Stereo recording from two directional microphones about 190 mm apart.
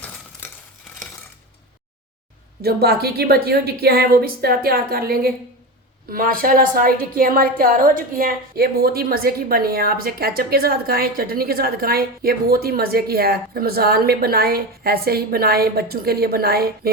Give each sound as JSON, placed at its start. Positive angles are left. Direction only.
{"t": 2.6, "sound": "a woman's voice", "side_deg": -55}